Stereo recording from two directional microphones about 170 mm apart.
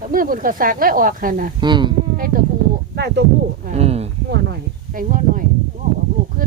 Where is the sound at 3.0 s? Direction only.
75° right (ahead or behind).